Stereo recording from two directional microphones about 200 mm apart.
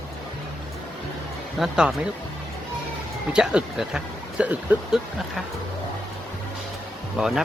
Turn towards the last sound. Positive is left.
turn(degrees=-5)  # may be behind; listen again after turning